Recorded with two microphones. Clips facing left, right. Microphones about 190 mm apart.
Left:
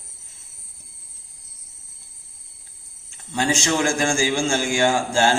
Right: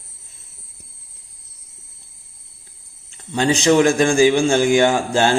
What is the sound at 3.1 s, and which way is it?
A man's voice, 20° right (ahead or behind).